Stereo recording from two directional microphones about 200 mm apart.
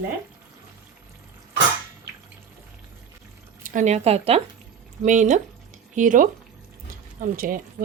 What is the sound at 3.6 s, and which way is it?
Speech, 40° right (ahead or behind).